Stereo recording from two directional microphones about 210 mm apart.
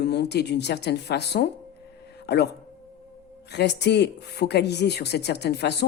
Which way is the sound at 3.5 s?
55° left (ahead or behind).